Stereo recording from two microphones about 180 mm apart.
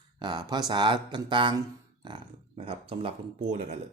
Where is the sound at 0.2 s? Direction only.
25° right (ahead or behind).